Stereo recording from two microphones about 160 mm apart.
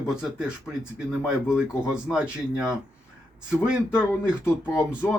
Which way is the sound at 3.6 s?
5° right (ahead or behind).